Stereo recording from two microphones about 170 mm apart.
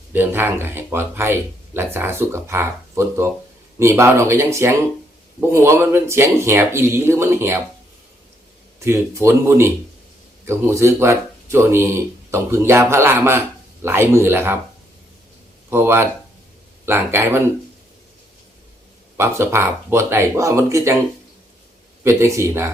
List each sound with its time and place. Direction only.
0.1 s speech: 10° right (ahead or behind)
8.8 s speech: 15° right (ahead or behind)
15.7 s speech: 15° right (ahead or behind)
19.1 s speech: 15° right (ahead or behind)
22.0 s speech: 15° right (ahead or behind)